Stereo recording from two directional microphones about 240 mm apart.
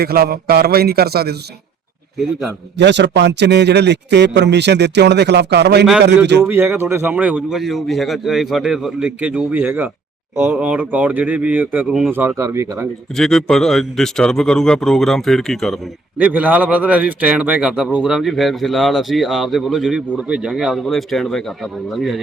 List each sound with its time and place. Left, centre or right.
0.0 s a man's voice: right
2.7 s a man's voice: right
6.4 s speech: centre
13.1 s speech: centre